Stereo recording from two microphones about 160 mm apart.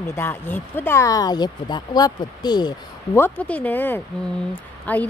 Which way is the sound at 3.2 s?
10° left (ahead or behind).